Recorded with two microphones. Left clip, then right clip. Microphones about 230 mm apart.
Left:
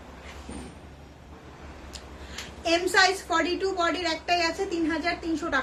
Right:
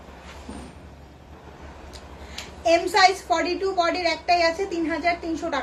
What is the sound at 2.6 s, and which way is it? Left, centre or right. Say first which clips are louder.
A woman's voice: right 4 dB; centre.